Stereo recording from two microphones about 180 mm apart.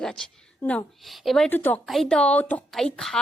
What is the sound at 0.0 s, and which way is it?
A woman's voice, 5° left (ahead or behind).